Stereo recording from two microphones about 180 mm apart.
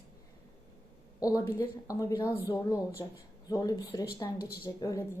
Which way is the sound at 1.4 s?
20° left (ahead or behind).